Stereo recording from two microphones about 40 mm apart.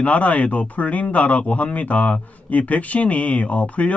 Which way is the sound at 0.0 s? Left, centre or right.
Left.